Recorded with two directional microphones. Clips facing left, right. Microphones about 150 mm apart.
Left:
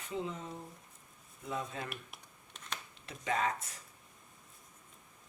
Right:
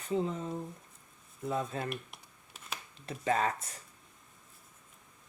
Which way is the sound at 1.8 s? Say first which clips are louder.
Right 7 dB; 5° right (ahead or behind).